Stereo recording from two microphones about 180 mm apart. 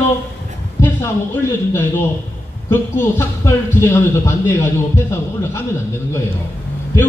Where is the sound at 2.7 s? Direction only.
15° left (ahead or behind).